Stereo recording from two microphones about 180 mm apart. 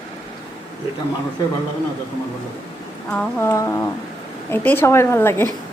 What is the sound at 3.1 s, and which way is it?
A woman's voice, 15° left (ahead or behind).